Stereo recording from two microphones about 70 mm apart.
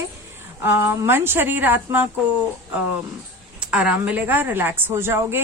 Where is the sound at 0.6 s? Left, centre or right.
Right.